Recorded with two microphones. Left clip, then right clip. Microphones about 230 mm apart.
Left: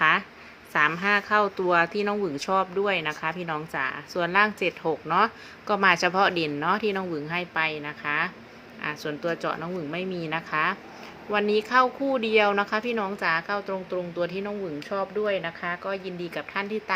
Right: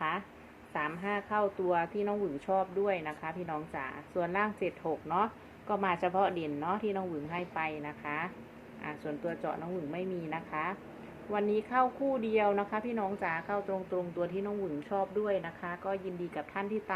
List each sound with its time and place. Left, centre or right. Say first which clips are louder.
0.7 s speech: left 12 dB; left